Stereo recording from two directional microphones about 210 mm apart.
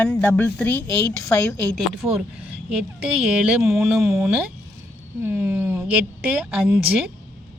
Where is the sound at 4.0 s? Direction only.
10° right (ahead or behind).